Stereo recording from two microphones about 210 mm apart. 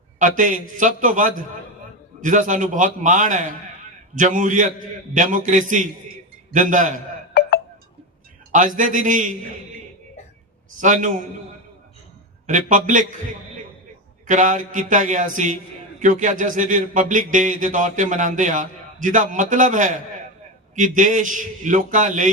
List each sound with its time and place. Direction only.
0.2 s a man's voice: 40° right (ahead or behind)
7.3 s music: 50° left (ahead or behind)
8.5 s a man's voice: 40° right (ahead or behind)
10.8 s a man's voice: 35° right (ahead or behind)
12.5 s a man's voice: 35° right (ahead or behind)
14.3 s a man's voice: 35° right (ahead or behind)